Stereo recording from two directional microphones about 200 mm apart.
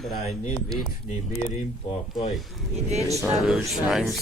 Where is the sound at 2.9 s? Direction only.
30° right (ahead or behind).